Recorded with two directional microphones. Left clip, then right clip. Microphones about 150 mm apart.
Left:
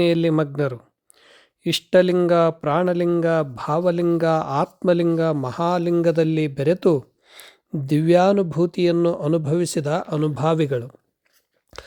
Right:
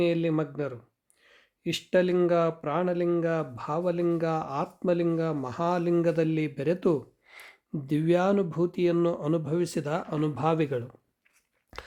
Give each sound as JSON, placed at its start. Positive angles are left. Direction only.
{"t": 0.0, "sound": "speech", "side_deg": 50}
{"t": 7.3, "sound": "a sound", "side_deg": 25}
{"t": 7.9, "sound": "speech", "side_deg": 40}
{"t": 11.7, "sound": "biting", "side_deg": 25}